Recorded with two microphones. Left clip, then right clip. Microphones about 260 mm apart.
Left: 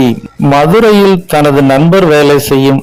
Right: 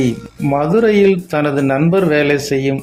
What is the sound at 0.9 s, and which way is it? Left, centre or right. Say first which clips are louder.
A man's voice: left 6 dB; left.